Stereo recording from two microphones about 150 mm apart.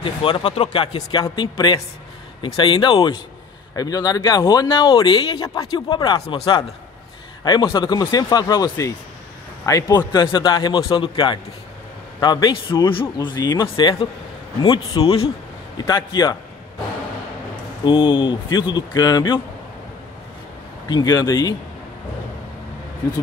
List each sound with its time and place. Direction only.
0.0 s a man's voice: 35° left (ahead or behind)
0.6 s speech: 45° left (ahead or behind)
1.3 s a man's voice: 30° left (ahead or behind)
7.4 s a man's voice: 30° left (ahead or behind)
16.1 s speech: 25° left (ahead or behind)
17.8 s a man's voice: 35° left (ahead or behind)
20.9 s speech: 25° left (ahead or behind)